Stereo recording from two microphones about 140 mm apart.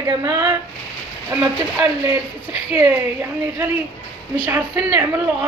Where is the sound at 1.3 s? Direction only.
10° right (ahead or behind).